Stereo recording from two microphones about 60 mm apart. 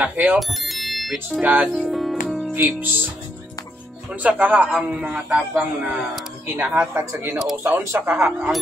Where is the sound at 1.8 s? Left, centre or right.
Centre.